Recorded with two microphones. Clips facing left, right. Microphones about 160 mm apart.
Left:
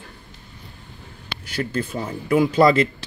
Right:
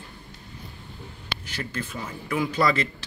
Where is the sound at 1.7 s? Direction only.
35° left (ahead or behind).